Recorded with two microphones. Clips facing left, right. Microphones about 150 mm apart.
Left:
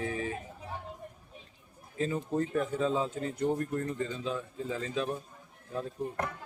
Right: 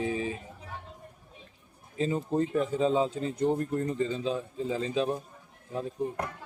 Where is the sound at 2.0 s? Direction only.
25° right (ahead or behind).